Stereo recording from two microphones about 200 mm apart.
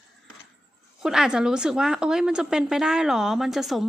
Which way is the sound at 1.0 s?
5° right (ahead or behind).